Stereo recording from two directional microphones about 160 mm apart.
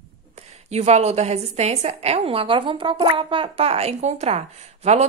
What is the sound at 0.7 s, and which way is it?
A woman's voice, 45° right (ahead or behind).